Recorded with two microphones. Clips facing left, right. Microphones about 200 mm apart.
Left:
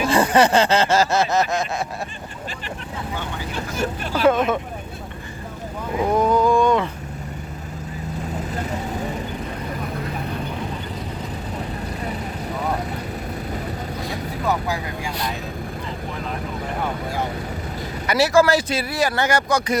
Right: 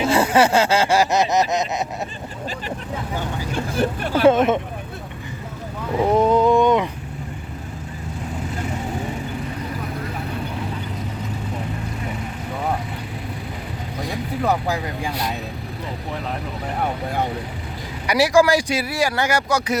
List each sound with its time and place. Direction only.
0.1 s speech: 5° right (ahead or behind)
3.7 s speech: 30° right (ahead or behind)
6.0 s speech: 25° right (ahead or behind)
18.0 s speech: 15° right (ahead or behind)